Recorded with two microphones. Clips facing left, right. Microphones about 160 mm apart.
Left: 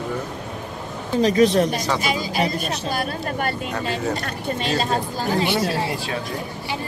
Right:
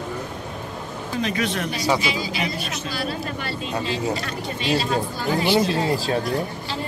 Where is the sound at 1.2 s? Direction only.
35° left (ahead or behind).